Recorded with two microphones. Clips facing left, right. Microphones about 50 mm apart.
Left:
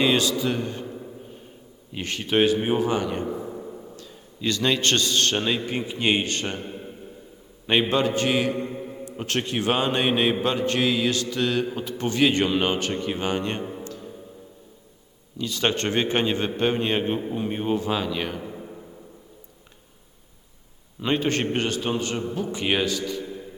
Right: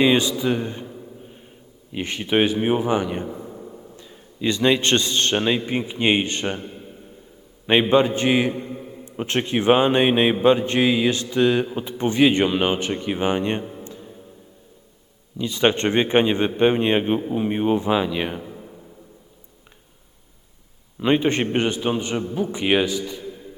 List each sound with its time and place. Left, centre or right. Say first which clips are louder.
0.0 s a man's voice: right 3 dB; centre
1.9 s a man's voice: right 3 dB; centre
3.2 s a sound: left 3 dB; centre
3.9 s a man's voice: right 1 dB; centre
7.7 s a man's voice: right 5 dB; centre
13.8 s music: left 2 dB; right
15.4 s a man's voice: right 5 dB; right
18.4 s a sound: left 2 dB; centre
21.0 s a man's voice: right 4 dB; right